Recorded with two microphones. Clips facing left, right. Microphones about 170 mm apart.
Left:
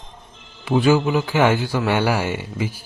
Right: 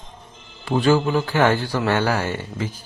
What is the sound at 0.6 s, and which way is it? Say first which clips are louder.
A man's voice: left 1 dB; 10° left (ahead or behind).